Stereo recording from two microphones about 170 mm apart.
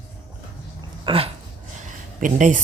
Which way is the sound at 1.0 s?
35° right (ahead or behind).